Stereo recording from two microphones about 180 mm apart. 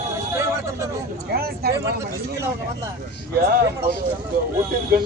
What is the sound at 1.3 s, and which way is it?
Speech, 60° right (ahead or behind).